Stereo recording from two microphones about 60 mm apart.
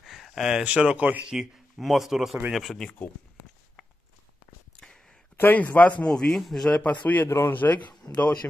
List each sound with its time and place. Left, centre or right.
0.0 s a sound: centre
0.7 s speech: centre
1.2 s speech: centre
4.7 s a sound: centre
5.4 s speech: left
6.0 s a man's voice: centre
6.8 s speech: left
7.2 s speech: left
7.5 s speech: left